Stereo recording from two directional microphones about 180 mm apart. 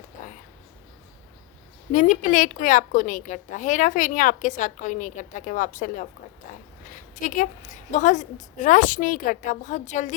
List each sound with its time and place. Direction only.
1.9 s a woman's voice: 45° left (ahead or behind)